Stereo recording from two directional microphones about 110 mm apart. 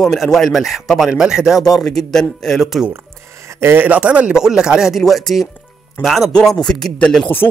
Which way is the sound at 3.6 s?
20° right (ahead or behind).